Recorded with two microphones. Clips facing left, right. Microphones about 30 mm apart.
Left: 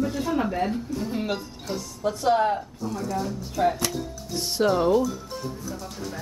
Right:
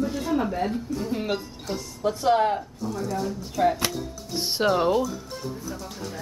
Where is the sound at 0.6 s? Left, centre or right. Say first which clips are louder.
Right 1 dB; centre.